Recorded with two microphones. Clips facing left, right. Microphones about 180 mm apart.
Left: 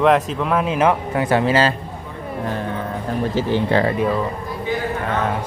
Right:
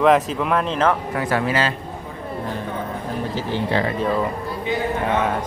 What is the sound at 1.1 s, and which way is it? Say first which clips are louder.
Speech: left 4 dB; 25° left (ahead or behind).